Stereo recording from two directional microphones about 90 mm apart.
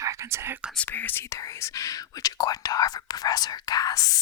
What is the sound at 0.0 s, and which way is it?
Whispering, 35° right (ahead or behind).